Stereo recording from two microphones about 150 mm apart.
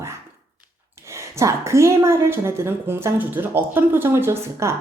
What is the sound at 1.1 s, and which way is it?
A woman's voice, 20° right (ahead or behind).